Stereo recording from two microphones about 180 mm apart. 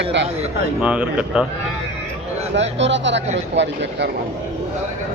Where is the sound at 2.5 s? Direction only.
85° right.